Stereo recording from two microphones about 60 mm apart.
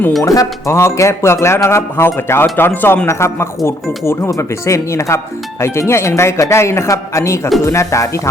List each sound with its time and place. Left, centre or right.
0.2 s speech: left
0.7 s speech: left
3.1 s speech: left